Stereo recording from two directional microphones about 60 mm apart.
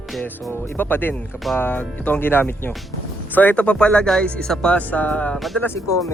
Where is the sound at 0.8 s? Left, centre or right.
Left; by 4.8 s centre.